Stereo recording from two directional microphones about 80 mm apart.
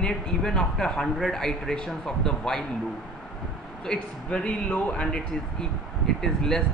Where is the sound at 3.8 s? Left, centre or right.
Centre.